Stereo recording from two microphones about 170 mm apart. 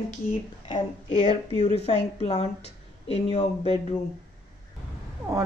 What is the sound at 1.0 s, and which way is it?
Speech, 40° left (ahead or behind).